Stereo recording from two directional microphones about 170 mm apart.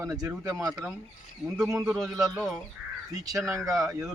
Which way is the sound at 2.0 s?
20° right (ahead or behind).